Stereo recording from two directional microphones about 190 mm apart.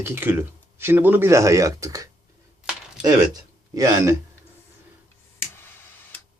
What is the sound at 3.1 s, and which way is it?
Speech, 20° right (ahead or behind).